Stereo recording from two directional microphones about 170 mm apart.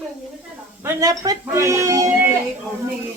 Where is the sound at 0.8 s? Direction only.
20° right (ahead or behind).